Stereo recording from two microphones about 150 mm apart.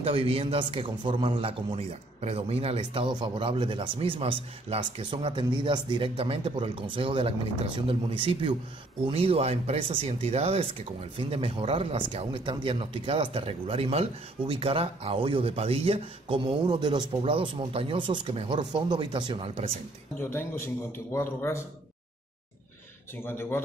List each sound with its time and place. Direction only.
0.0 s speech: 40° right (ahead or behind)
18.9 s speech: 30° right (ahead or behind)
20.2 s a man's voice: 15° left (ahead or behind)
23.2 s a man's voice: 15° left (ahead or behind)